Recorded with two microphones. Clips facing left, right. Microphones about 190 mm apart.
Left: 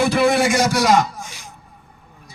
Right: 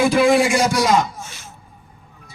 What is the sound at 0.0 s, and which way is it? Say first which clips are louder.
A man's voice: right 2 dB; 70° left (ahead or behind).